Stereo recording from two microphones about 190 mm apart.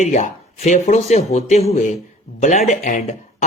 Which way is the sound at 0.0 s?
40° left (ahead or behind).